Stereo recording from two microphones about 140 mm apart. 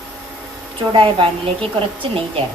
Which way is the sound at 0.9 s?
35° right (ahead or behind).